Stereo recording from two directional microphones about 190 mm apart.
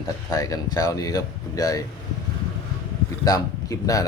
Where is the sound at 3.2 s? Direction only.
20° left (ahead or behind).